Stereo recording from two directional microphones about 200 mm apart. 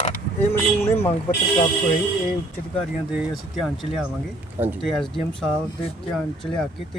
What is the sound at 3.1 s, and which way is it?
A man's voice, 5° right (ahead or behind).